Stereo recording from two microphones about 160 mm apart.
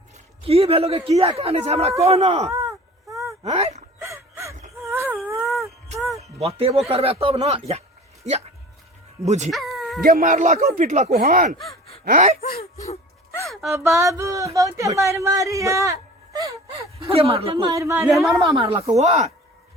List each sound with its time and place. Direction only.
0.4 s speech: 35° right (ahead or behind)
3.1 s a sound: 20° right (ahead or behind)
3.4 s speech: 40° right (ahead or behind)
4.0 s a sound: 20° right (ahead or behind)
6.1 s speech: 40° right (ahead or behind)
9.5 s bow-wow: centre (ahead or behind)
10.0 s speech: 65° right (ahead or behind); by 11.1 s 45° right (ahead or behind)
11.1 s speech: 65° right (ahead or behind)
12.4 s speech: 70° left (ahead or behind)
13.4 s a sound: centre (ahead or behind)
13.7 s speech: 15° right (ahead or behind)
16.6 s speech: 35° right (ahead or behind); by 18.1 s 15° right (ahead or behind)
18.1 s speech: centre (ahead or behind)
18.5 s speech: 35° right (ahead or behind)